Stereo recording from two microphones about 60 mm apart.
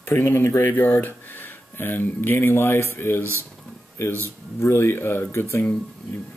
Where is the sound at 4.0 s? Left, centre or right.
Left.